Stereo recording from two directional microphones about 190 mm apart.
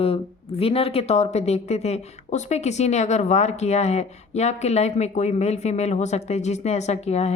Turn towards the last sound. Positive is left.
turn(degrees=35)  # may be behind; listen again after turning